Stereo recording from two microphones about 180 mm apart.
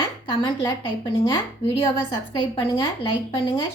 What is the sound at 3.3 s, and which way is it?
Speech, 30° left (ahead or behind).